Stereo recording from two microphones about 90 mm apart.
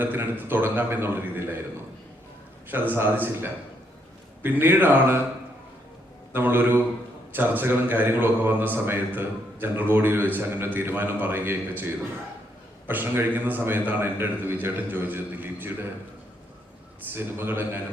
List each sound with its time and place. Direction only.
0.0 s speech: 20° right (ahead or behind)
2.6 s speech: 20° right (ahead or behind)
6.3 s speech: 20° right (ahead or behind)
12.9 s speech: 20° right (ahead or behind)
17.1 s speech: 25° right (ahead or behind)